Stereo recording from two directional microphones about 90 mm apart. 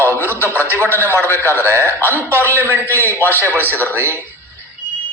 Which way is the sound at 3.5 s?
25° right (ahead or behind).